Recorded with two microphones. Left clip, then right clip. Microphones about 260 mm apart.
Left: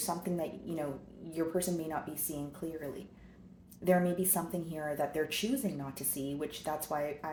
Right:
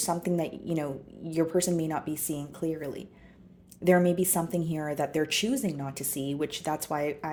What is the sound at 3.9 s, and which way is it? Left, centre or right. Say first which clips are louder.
Speech: right 6 dB; right.